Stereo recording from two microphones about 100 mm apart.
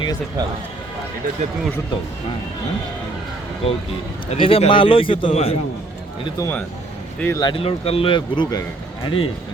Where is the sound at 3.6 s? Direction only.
85° left.